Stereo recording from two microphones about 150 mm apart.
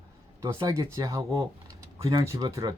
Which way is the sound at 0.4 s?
20° right (ahead or behind).